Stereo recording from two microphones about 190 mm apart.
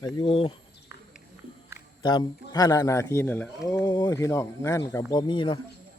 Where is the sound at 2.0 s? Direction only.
20° left (ahead or behind).